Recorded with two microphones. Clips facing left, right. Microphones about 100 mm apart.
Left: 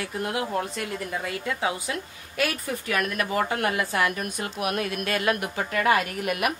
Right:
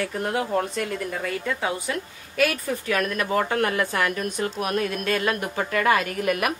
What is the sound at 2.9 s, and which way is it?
A woman's voice, 45° right (ahead or behind).